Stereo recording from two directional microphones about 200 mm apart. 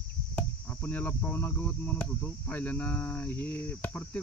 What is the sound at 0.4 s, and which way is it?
Speech, 5° left (ahead or behind).